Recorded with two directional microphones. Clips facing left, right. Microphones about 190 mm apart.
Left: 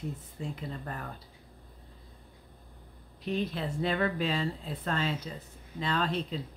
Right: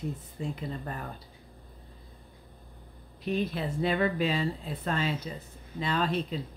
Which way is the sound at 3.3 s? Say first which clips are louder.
Right 2 dB; 10° right (ahead or behind).